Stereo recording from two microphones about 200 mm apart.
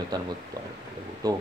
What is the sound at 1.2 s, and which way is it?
Speech, 20° right (ahead or behind).